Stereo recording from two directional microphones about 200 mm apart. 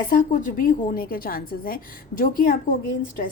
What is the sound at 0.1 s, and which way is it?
A woman's voice, 40° left (ahead or behind).